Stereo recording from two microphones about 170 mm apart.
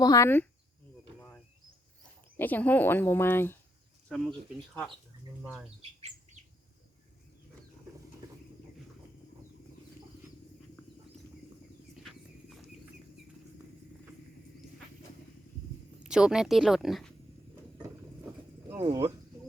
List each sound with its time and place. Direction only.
0.0 s speech: 20° left (ahead or behind)
2.4 s speech: 10° left (ahead or behind)
4.1 s speech: centre (ahead or behind)
16.0 s speech: 5° right (ahead or behind)
18.9 s speech: 20° right (ahead or behind)